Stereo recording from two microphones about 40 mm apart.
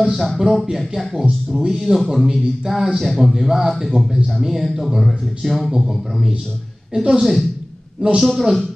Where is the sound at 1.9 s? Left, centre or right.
Right.